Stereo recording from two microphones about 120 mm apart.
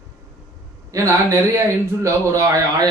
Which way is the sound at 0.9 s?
30° right (ahead or behind).